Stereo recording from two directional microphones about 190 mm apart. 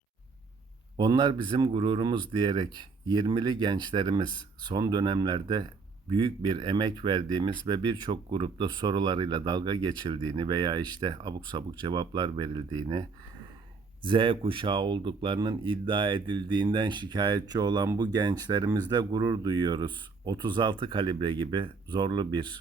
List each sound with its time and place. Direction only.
0.9 s speech: 20° right (ahead or behind)